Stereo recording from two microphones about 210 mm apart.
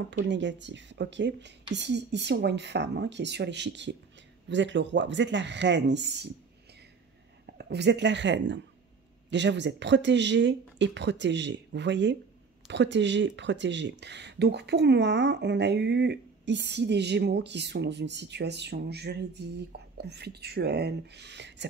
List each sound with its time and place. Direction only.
0.2 s speech: 60° right (ahead or behind)
7.4 s a woman's voice: 50° right (ahead or behind)